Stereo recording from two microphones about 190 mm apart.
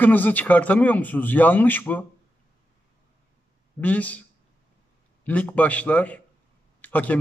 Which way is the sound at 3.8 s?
10° left (ahead or behind).